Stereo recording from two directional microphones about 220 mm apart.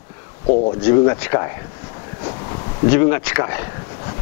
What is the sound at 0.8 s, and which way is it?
Speech, 15° left (ahead or behind).